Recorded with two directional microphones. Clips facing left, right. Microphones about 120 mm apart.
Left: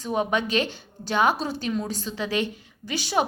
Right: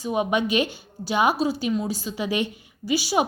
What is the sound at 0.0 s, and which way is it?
A woman's voice, 10° right (ahead or behind).